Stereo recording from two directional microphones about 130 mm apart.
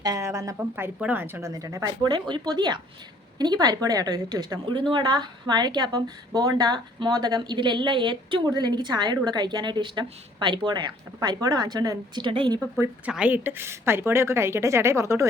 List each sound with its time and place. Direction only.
0.0 s a woman's voice: 25° right (ahead or behind)
13.1 s a woman's voice: 10° right (ahead or behind)